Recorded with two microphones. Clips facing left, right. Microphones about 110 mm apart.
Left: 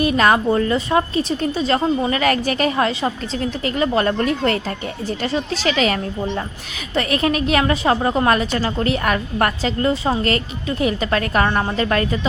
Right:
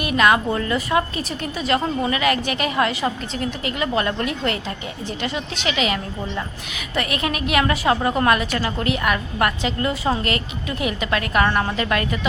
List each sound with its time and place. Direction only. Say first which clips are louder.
0.0 s a woman's voice: left 2 dB; 35° left (ahead or behind)